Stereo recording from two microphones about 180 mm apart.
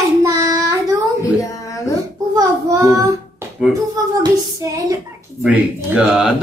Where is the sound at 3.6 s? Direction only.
5° right (ahead or behind).